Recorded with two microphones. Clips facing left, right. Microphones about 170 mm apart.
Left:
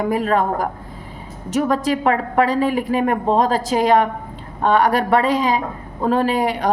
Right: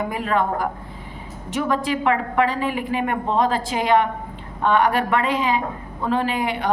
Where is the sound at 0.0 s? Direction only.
40° left (ahead or behind).